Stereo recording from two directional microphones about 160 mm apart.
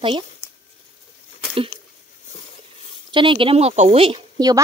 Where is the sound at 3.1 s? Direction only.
30° right (ahead or behind).